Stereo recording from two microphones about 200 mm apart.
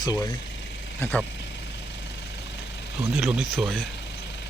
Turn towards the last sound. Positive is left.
turn(degrees=0)  # may be behind; listen again after turning